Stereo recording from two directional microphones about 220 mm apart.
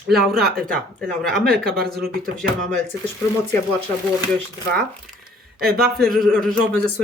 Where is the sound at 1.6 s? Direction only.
45° right (ahead or behind).